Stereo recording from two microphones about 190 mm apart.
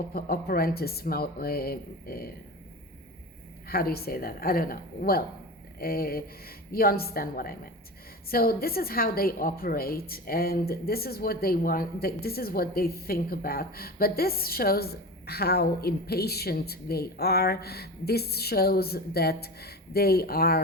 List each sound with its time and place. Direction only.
0.1 s a woman's voice: 55° left (ahead or behind)
3.7 s a woman's voice: 50° left (ahead or behind)